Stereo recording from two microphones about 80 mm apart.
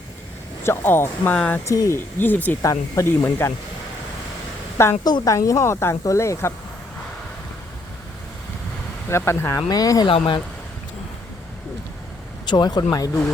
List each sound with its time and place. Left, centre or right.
0.6 s speech: left
1.6 s speech: left
2.1 s speech: left
2.6 s speech: left
5.0 s speech: left
5.3 s speech: left
9.0 s speech: left
9.6 s speech: left
10.1 s speech: left
12.5 s speech: left